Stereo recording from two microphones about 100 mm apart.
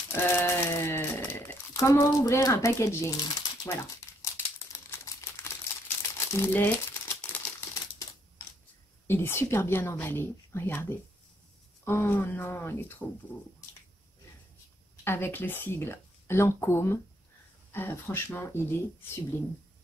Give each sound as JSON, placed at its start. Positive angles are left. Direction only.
{"t": 0.1, "sound": "a sound", "side_deg": 25}
{"t": 4.2, "sound": "crumpling", "side_deg": 30}
{"t": 9.0, "sound": "a woman's voice", "side_deg": 25}
{"t": 15.0, "sound": "a woman's voice", "side_deg": 25}